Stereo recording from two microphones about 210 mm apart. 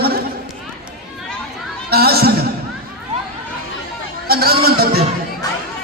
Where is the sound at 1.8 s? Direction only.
50° right (ahead or behind).